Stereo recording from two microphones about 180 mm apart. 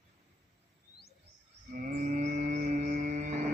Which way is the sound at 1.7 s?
45° right (ahead or behind).